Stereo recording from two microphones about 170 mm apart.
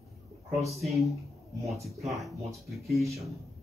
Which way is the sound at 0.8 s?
Centre (ahead or behind).